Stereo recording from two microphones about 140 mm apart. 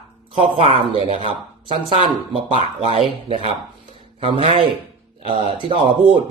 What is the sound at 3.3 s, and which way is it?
Speech, 40° right (ahead or behind).